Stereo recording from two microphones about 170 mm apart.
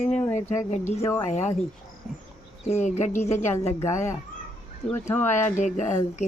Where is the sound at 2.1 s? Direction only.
Centre (ahead or behind).